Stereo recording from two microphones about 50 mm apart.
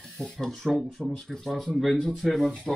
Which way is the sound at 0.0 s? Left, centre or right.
Centre.